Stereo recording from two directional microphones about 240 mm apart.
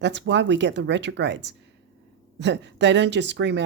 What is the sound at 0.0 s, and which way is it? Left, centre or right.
Speech, right.